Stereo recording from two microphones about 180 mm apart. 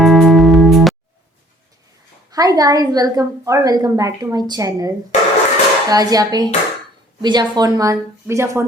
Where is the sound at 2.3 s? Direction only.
20° right (ahead or behind).